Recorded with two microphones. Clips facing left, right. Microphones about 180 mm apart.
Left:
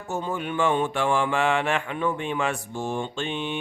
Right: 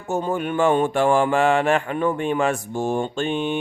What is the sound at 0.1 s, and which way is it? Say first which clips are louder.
Mantra: right 6 dB; 50° right (ahead or behind).